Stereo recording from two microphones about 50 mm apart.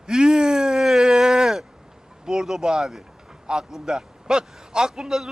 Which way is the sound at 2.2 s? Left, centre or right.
Centre.